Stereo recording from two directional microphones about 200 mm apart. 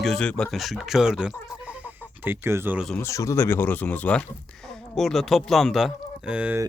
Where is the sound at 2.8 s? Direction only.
10° left (ahead or behind); by 6.7 s 10° right (ahead or behind).